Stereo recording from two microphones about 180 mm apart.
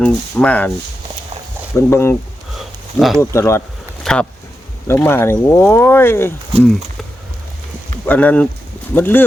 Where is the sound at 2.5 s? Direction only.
Centre (ahead or behind).